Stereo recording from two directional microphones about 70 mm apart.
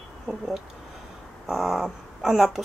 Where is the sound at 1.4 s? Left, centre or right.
Centre.